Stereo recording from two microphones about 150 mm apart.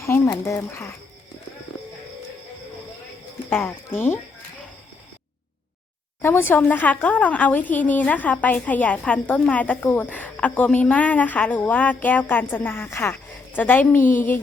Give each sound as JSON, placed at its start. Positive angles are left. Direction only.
{"t": 0.0, "sound": "a woman's voice", "side_deg": 15}
{"t": 3.5, "sound": "a woman's voice", "side_deg": 10}
{"t": 6.2, "sound": "a woman's voice", "side_deg": 15}